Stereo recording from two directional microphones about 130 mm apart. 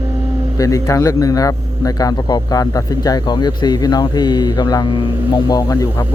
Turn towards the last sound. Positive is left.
turn(degrees=30)  # may be behind; listen again after turning